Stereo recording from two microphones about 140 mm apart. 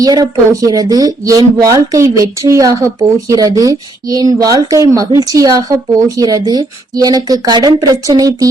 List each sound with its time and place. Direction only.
0.0 s speech: 25° right (ahead or behind)